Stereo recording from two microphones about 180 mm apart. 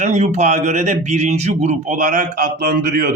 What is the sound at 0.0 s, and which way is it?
Speech, 40° right (ahead or behind).